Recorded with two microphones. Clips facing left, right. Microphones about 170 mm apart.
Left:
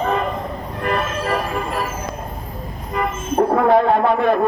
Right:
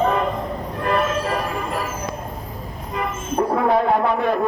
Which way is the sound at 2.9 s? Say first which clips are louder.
Left 4 dB; 50° left (ahead or behind).